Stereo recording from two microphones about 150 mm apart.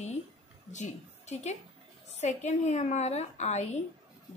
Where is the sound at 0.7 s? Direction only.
55° left (ahead or behind).